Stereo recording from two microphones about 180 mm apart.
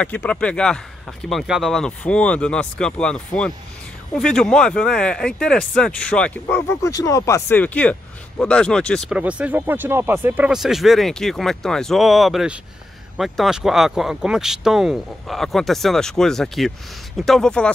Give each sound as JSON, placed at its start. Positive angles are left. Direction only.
{"t": 0.0, "sound": "speech", "side_deg": 10}
{"t": 9.2, "sound": "speech", "side_deg": -10}